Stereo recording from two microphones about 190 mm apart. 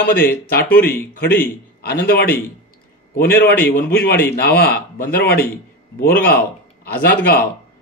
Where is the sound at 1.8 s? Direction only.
55° left (ahead or behind).